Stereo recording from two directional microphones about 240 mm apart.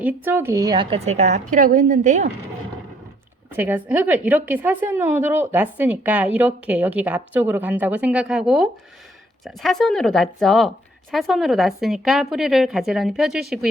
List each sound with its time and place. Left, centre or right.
0.0 s a woman's voice: centre; by 2.3 s right
3.5 s a woman's voice: centre